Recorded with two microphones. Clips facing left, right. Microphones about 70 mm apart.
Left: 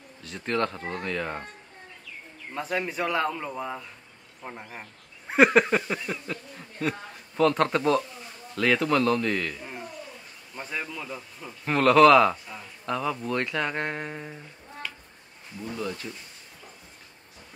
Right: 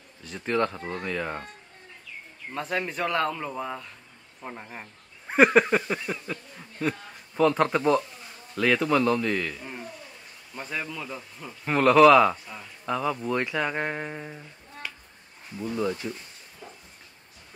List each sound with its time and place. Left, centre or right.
0.2 s a man's voice: centre
2.5 s a man's voice: centre
15.6 s speech: centre